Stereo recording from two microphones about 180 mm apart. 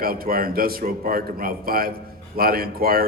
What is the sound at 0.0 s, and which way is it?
A man's voice, 55° right (ahead or behind).